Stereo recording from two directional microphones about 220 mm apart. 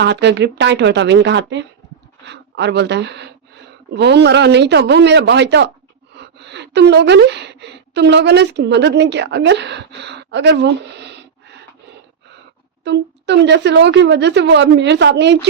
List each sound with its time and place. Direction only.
0.0 s a woman's voice: 50° right (ahead or behind)
12.8 s a woman's voice: 50° right (ahead or behind)